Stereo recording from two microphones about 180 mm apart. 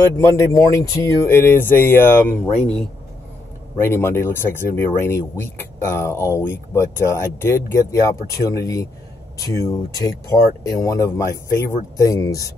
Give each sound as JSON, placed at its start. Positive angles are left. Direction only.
{"t": 0.0, "sound": "speech", "side_deg": 15}
{"t": 3.7, "sound": "speech", "side_deg": 15}